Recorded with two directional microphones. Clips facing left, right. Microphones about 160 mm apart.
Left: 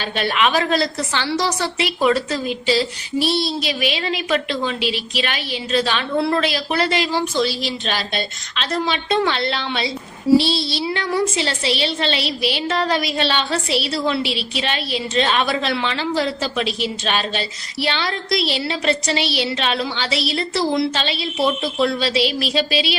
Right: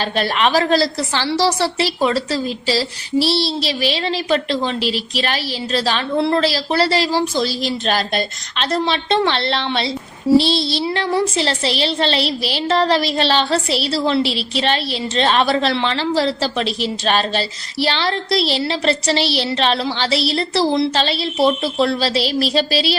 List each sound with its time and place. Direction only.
0.0 s speech: 35° right (ahead or behind)